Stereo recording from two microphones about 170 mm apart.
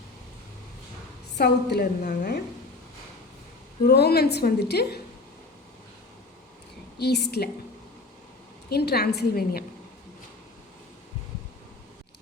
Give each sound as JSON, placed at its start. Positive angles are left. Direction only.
{"t": 1.4, "sound": "a woman's voice", "side_deg": 65}
{"t": 3.8, "sound": "a woman's voice", "side_deg": 70}
{"t": 7.0, "sound": "a woman's voice", "side_deg": 75}
{"t": 8.7, "sound": "a woman's voice", "side_deg": 70}